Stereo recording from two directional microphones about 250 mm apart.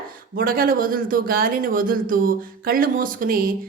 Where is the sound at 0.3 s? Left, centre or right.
Right.